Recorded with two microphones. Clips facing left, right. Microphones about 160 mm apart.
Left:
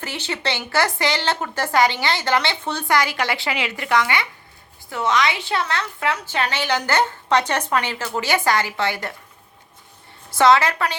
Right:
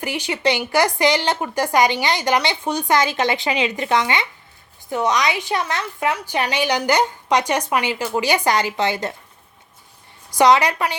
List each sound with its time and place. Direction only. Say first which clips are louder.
0.0 s speech: right 5 dB; 15° right (ahead or behind)
10.3 s speech: right 1 dB; 15° right (ahead or behind)